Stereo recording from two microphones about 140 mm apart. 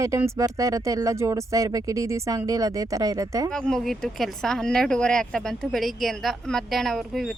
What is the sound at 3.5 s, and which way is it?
Speech, 5° left (ahead or behind).